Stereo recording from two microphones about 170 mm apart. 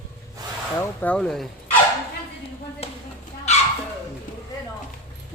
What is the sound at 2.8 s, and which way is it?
Speech, 35° left (ahead or behind).